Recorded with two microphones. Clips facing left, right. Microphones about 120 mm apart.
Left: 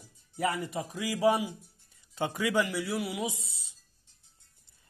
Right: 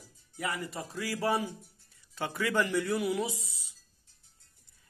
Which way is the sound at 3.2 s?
20° left (ahead or behind).